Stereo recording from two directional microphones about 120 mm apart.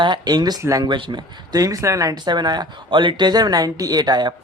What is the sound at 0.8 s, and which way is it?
Speech, 40° right (ahead or behind).